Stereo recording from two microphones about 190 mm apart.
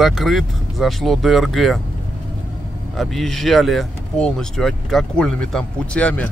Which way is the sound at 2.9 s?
Centre (ahead or behind).